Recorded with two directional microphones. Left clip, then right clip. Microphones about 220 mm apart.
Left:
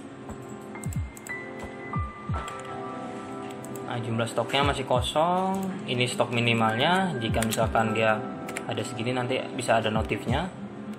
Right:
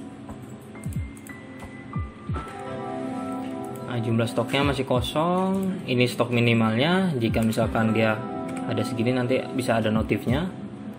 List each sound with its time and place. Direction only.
3.9 s speech: 20° right (ahead or behind)